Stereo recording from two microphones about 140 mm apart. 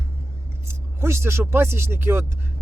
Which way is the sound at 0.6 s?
20° right (ahead or behind).